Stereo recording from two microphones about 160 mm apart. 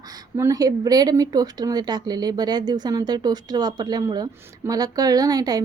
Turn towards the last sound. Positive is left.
turn(degrees=-25)  # may be behind; listen again after turning